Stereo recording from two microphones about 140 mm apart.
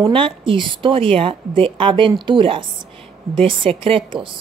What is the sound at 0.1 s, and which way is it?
A woman's voice, 40° right (ahead or behind).